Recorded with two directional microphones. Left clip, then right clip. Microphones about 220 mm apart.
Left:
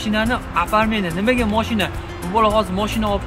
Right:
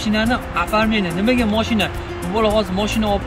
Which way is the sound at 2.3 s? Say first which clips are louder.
Left 1 dB; 30° left (ahead or behind).